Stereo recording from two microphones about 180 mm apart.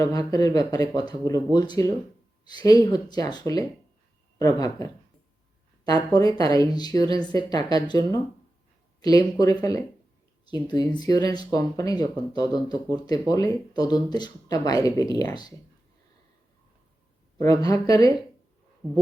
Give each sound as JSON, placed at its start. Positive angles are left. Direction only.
{"t": 0.0, "sound": "speech", "side_deg": 20}
{"t": 17.4, "sound": "speech", "side_deg": 20}